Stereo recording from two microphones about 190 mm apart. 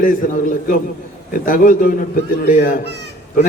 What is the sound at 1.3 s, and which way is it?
A man's voice, 45° left (ahead or behind).